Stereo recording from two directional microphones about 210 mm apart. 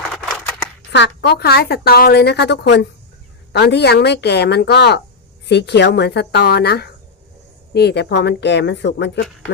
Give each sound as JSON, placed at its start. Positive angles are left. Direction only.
{"t": 0.9, "sound": "a woman's voice", "side_deg": 55}